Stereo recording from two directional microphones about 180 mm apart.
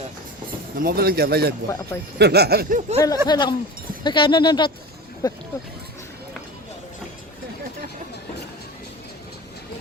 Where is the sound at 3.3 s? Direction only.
25° left (ahead or behind).